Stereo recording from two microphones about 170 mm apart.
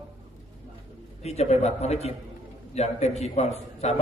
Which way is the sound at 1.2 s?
40° left (ahead or behind).